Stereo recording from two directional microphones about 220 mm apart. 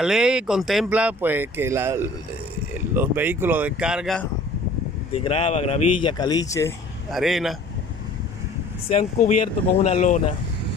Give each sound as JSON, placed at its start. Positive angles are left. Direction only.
{"t": 0.0, "sound": "speech", "side_deg": -5}
{"t": 5.1, "sound": "speech", "side_deg": 25}
{"t": 7.1, "sound": "speech", "side_deg": 0}
{"t": 8.8, "sound": "speech", "side_deg": 30}